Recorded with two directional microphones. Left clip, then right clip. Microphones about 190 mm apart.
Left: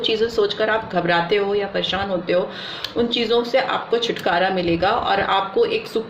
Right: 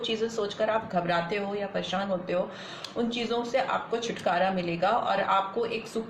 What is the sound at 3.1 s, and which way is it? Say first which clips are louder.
Speech: left 10 dB; 40° left (ahead or behind).